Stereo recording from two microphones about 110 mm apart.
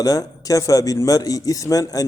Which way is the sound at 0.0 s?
35° left (ahead or behind).